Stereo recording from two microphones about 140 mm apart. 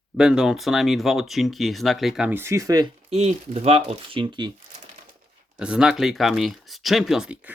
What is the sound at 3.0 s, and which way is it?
Speech, 50° right (ahead or behind).